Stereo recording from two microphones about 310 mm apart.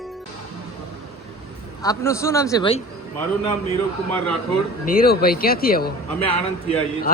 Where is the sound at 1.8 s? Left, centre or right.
Centre.